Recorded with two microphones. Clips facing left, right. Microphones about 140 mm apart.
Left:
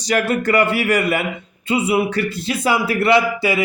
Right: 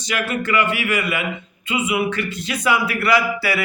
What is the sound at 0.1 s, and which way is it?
Speech, 40° left (ahead or behind).